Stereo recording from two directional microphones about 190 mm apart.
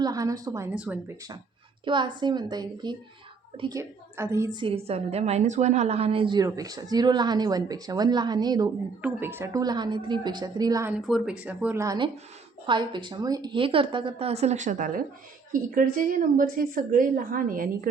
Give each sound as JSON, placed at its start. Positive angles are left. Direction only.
{"t": 0.0, "sound": "speech", "side_deg": -20}
{"t": 1.8, "sound": "a woman's voice", "side_deg": -25}
{"t": 9.0, "sound": "a woman's voice", "side_deg": -10}
{"t": 10.9, "sound": "a woman's voice", "side_deg": 0}